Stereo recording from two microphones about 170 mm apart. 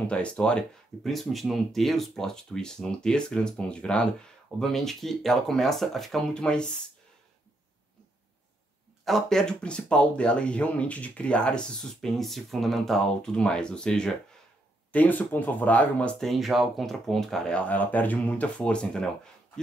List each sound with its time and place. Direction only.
0.1 s speech: 5° left (ahead or behind)
9.0 s speech: centre (ahead or behind)